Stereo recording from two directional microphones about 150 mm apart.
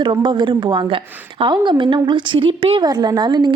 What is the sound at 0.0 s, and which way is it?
A woman's voice, 30° right (ahead or behind).